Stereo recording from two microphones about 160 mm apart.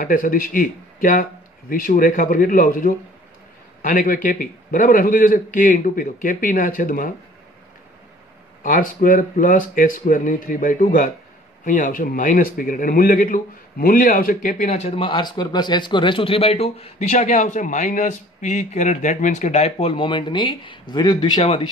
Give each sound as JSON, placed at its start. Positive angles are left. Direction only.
{"t": 0.0, "sound": "a man's voice", "side_deg": 60}
{"t": 8.6, "sound": "a man's voice", "side_deg": 60}